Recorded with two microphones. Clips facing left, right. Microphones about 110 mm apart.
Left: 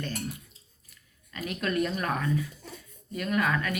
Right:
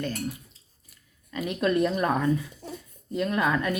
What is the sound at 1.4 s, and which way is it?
A child's voice, 20° right (ahead or behind).